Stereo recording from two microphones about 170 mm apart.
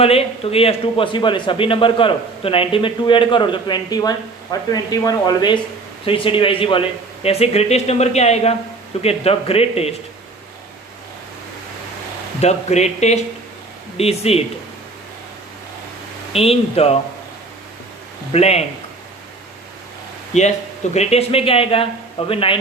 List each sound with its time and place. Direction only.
0.0 s a man's voice: 35° left (ahead or behind)
12.4 s a man's voice: 40° left (ahead or behind)
16.3 s a man's voice: 35° left (ahead or behind)
18.3 s a man's voice: 40° left (ahead or behind)
20.9 s a man's voice: 40° left (ahead or behind)